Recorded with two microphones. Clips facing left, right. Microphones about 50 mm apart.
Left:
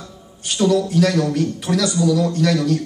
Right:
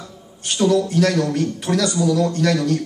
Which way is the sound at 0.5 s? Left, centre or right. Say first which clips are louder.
Even; centre.